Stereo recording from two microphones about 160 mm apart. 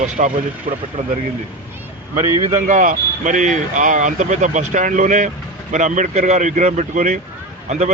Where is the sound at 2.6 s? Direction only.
50° right (ahead or behind).